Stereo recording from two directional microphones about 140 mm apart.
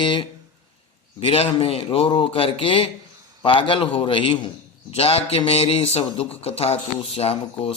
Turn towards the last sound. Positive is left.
turn(degrees=45)  # may be behind; listen again after turning